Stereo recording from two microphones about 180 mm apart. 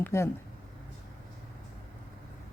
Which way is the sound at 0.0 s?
15° left (ahead or behind).